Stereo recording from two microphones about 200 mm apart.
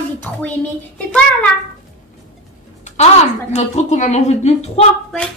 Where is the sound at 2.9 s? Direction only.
30° left (ahead or behind).